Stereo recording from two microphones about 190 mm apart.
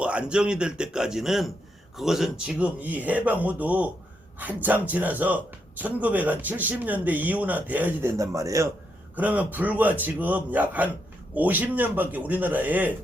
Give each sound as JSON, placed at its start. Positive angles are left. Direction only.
{"t": 0.0, "sound": "a man's voice", "side_deg": -5}